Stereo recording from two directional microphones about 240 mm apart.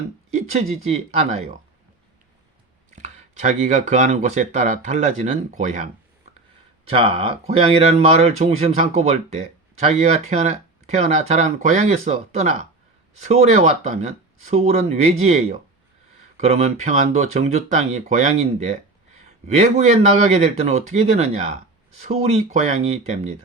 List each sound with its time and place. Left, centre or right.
0.3 s speech: right
2.9 s speech: right